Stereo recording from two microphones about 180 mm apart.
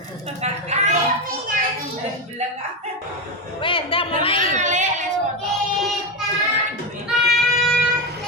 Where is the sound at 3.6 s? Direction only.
30° left (ahead or behind).